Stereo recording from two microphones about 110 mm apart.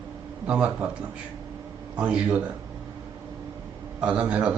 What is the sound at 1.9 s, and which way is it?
Speech, 10° right (ahead or behind).